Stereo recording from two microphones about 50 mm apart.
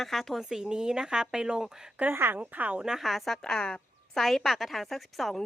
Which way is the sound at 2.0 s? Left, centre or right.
Right.